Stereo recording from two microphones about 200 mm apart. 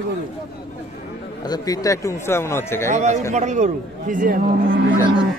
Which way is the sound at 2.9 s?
35° right (ahead or behind).